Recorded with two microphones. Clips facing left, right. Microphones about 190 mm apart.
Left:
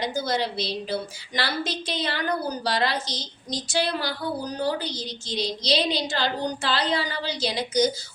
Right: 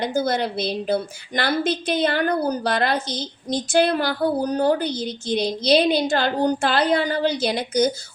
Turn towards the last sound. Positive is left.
turn(degrees=-55)  # may be behind; listen again after turning